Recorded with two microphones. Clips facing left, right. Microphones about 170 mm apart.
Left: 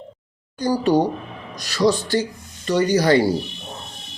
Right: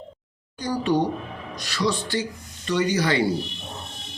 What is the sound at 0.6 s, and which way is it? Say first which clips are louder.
A man's voice: left 5 dB; 40° left (ahead or behind).